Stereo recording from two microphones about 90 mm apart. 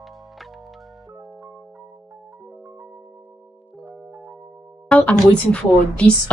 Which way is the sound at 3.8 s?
20° right (ahead or behind).